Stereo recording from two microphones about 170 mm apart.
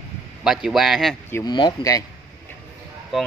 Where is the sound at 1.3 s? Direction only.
25° left (ahead or behind).